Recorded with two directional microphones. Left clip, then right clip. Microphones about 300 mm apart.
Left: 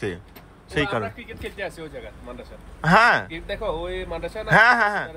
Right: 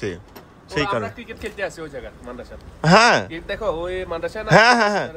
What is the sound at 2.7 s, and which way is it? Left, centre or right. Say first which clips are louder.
Speech: right 2 dB; centre.